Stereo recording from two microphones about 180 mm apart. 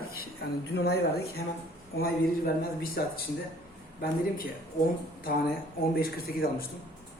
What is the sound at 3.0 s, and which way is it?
Speech, 60° left (ahead or behind).